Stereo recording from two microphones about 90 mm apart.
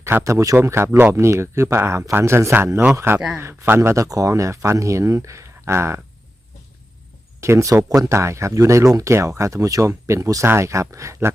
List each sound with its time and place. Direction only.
0.0 s speech: 30° right (ahead or behind)
7.4 s speech: 35° right (ahead or behind)